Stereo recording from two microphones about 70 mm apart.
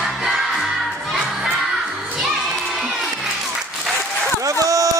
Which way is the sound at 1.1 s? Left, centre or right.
Centre.